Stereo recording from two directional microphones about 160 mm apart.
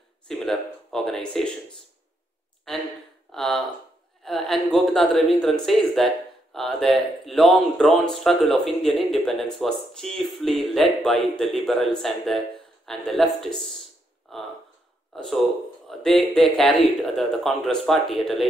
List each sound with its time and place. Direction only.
0.3 s speech: 5° left (ahead or behind)
3.3 s speech: 5° left (ahead or behind)
14.3 s a sound: centre (ahead or behind)
15.9 s speech: centre (ahead or behind)